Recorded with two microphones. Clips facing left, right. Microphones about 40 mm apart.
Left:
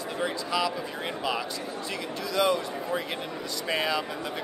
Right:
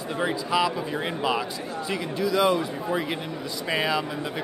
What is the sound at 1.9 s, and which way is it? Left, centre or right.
A man's voice, centre.